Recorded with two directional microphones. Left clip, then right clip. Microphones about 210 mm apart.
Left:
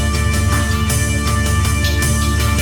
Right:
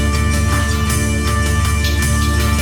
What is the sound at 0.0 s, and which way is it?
Music, centre (ahead or behind).